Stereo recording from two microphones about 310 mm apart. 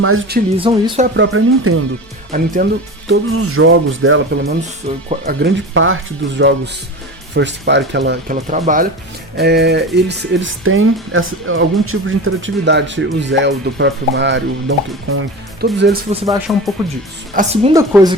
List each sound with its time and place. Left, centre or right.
0.0 s speech: right
0.6 s speech: centre
1.1 s speech: right
2.3 s speech: right
3.1 s speech: right
4.9 s speech: right
16.1 s speech: centre
16.5 s speech: centre
17.3 s speech: centre